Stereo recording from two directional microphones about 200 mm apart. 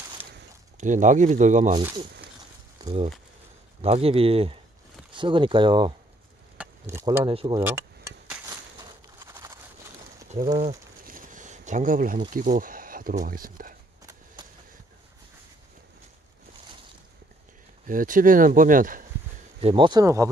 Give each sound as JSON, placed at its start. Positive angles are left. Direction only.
{"t": 0.7, "sound": "speech", "side_deg": -40}
{"t": 2.8, "sound": "speech", "side_deg": -30}
{"t": 6.6, "sound": "speech", "side_deg": -15}
{"t": 7.2, "sound": "speech", "side_deg": -25}
{"t": 7.6, "sound": "dishes", "side_deg": -10}
{"t": 9.2, "sound": "a sound", "side_deg": -15}
{"t": 10.3, "sound": "speech", "side_deg": -35}
{"t": 11.1, "sound": "a sound", "side_deg": -40}
{"t": 12.3, "sound": "speech", "side_deg": -40}
{"t": 17.8, "sound": "speech", "side_deg": -40}
{"t": 19.6, "sound": "speech", "side_deg": -25}